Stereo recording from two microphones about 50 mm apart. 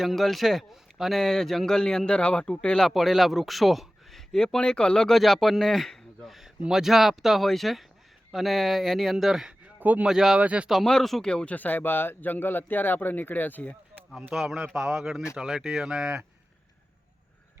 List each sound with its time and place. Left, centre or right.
0.0 s speech: centre
1.2 s speech: centre
2.8 s speech: centre
4.4 s speech: centre
5.1 s a man's voice: centre
6.2 s speech: centre
9.1 s speech: centre
10.4 s speech: right
10.8 s speech: centre
11.5 s speech: left
14.3 s speech: centre
15.9 s speech: centre